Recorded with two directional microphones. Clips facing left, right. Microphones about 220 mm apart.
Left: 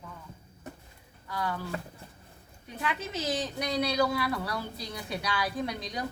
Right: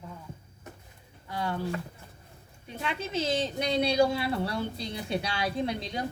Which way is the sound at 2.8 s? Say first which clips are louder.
Right 2 dB; 25° right (ahead or behind).